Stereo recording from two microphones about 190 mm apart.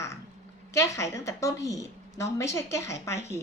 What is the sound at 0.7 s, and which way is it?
A woman's voice, 15° left (ahead or behind).